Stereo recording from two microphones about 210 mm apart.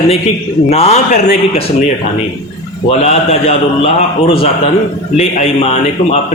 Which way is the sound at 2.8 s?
30° left (ahead or behind).